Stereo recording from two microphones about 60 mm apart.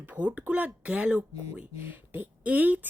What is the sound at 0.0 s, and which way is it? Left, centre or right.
Speech, right.